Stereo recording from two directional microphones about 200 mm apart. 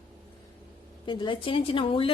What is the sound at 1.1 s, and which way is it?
A woman's voice, 25° left (ahead or behind).